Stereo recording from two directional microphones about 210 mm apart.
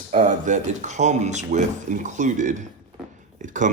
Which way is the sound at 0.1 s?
35° right (ahead or behind).